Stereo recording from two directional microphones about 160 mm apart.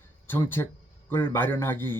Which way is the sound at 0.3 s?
15° left (ahead or behind).